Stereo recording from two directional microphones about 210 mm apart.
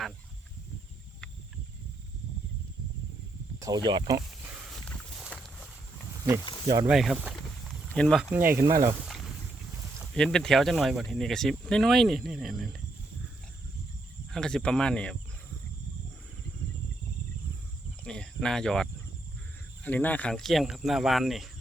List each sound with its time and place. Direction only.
3.6 s speech: 20° right (ahead or behind)
4.9 s a sound: centre (ahead or behind)
6.8 s speech: centre (ahead or behind)
10.0 s speech: centre (ahead or behind)
14.3 s speech: 5° left (ahead or behind)
18.0 s speech: 5° left (ahead or behind)